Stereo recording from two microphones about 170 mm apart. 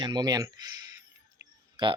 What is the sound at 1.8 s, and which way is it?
Speech, 30° right (ahead or behind).